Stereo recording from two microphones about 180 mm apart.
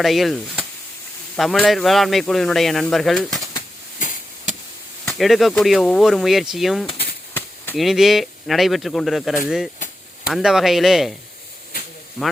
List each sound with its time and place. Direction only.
0.0 s speech: centre (ahead or behind)
5.0 s speech: centre (ahead or behind)
7.3 s chop: 10° left (ahead or behind)
7.8 s speech: centre (ahead or behind)
10.3 s speech: centre (ahead or behind)